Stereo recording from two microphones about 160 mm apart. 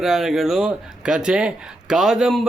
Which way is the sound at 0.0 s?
Centre (ahead or behind).